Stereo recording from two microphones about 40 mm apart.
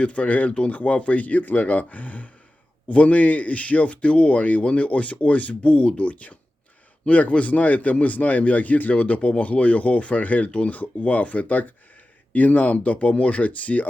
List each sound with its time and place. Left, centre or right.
0.0 s a man's voice: left